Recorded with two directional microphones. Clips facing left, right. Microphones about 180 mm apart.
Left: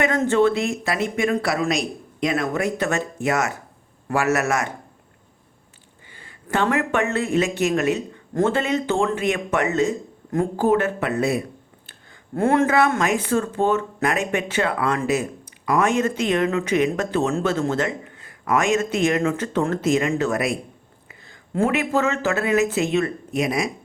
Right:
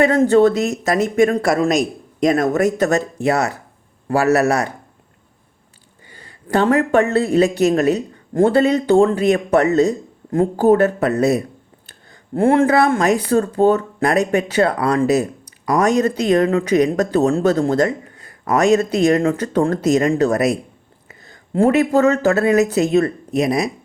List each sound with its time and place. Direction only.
0.0 s speech: 30° right (ahead or behind)
6.1 s speech: 40° right (ahead or behind)